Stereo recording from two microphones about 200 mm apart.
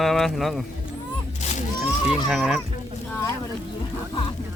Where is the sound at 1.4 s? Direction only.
35° left (ahead or behind).